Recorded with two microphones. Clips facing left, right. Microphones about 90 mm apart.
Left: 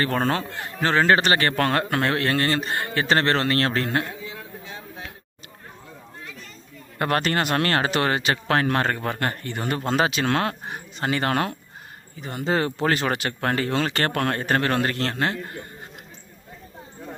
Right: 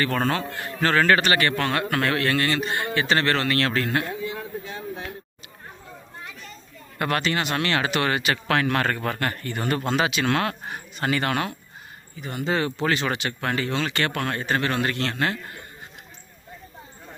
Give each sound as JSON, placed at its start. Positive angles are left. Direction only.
{"t": 0.0, "sound": "speech", "side_deg": 30}
{"t": 1.9, "sound": "speech", "side_deg": 30}
{"t": 4.3, "sound": "a sound", "side_deg": -60}
{"t": 7.0, "sound": "speech", "side_deg": 40}
{"t": 9.8, "sound": "speech", "side_deg": 40}